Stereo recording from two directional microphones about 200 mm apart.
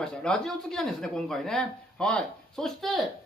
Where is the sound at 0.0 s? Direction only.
5° left (ahead or behind).